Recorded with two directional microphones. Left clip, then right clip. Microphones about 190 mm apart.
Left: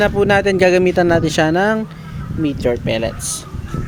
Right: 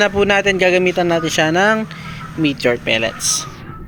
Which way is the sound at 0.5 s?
35° left (ahead or behind).